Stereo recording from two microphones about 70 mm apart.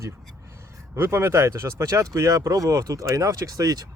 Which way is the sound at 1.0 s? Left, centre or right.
Right.